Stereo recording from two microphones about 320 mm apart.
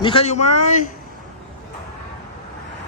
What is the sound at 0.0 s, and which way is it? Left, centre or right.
Speech, centre.